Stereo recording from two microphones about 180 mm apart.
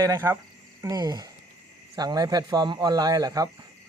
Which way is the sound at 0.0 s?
15° right (ahead or behind).